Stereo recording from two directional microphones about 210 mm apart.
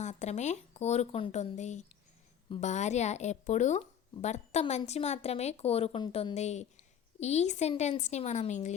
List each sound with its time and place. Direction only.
0.0 s speech: 35° left (ahead or behind)